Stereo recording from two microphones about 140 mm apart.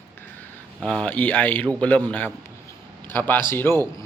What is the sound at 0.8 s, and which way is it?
Speech, 5° left (ahead or behind).